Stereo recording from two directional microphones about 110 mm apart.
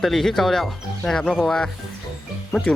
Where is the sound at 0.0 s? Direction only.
5° left (ahead or behind).